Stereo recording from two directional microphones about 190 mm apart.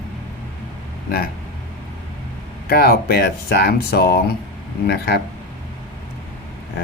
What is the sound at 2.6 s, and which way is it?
Speech, 55° left (ahead or behind).